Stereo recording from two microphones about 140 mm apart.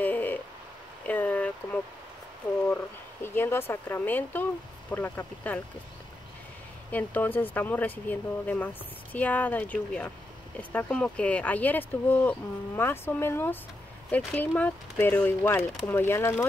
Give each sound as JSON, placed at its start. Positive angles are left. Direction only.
{"t": 0.0, "sound": "a sound", "side_deg": 10}
{"t": 2.7, "sound": "speech", "side_deg": 15}
{"t": 6.9, "sound": "speech", "side_deg": 10}